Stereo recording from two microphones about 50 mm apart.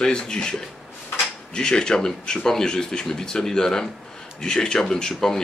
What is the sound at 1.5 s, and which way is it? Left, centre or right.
Speech, centre.